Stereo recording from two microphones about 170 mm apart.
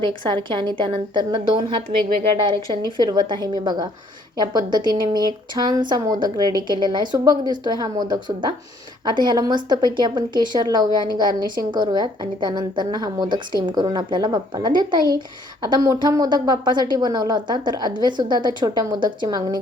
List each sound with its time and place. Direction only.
0.0 s a woman's voice: 25° right (ahead or behind)
3.0 s a woman's voice: 25° right (ahead or behind)